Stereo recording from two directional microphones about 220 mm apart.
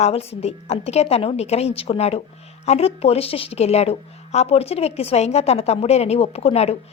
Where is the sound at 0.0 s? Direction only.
30° left (ahead or behind).